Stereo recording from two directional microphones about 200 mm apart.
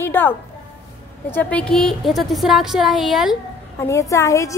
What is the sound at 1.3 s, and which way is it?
A woman's voice, 5° left (ahead or behind).